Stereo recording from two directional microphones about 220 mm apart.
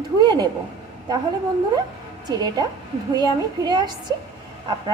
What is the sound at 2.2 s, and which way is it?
A woman's voice, 20° right (ahead or behind).